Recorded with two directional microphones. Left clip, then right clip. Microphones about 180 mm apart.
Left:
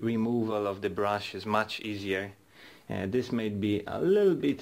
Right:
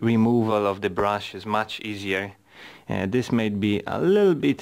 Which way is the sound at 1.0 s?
30° right (ahead or behind).